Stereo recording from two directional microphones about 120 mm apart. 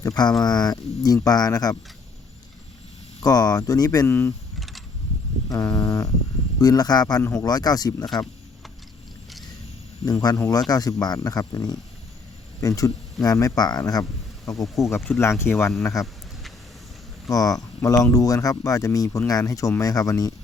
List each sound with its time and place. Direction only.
0.0 s speech: 35° left (ahead or behind)
3.2 s speech: 35° left (ahead or behind)
5.5 s a sound: 30° left (ahead or behind)
6.6 s speech: 30° left (ahead or behind)
10.1 s speech: 30° left (ahead or behind)
14.5 s speech: centre (ahead or behind)
15.0 s speech: 20° left (ahead or behind)
17.2 s speech: 30° left (ahead or behind)